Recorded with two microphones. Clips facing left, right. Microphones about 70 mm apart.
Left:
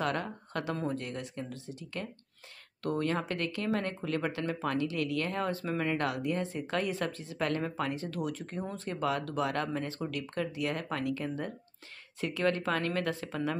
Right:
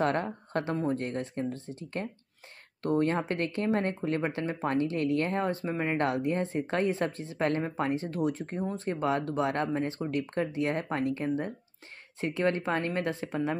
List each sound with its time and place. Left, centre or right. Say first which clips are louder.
0.0 s speech: right 4 dB; right